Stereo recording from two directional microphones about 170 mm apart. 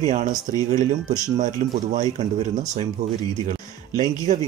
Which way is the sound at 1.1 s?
45° right (ahead or behind).